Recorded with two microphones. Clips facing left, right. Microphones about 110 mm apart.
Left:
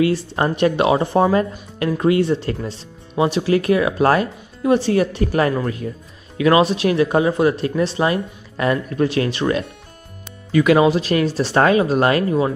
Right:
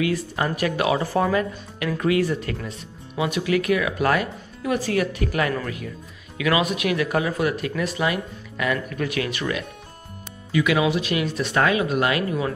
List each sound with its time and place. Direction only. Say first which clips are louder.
0.0 s speech: left 6 dB; 30° left (ahead or behind)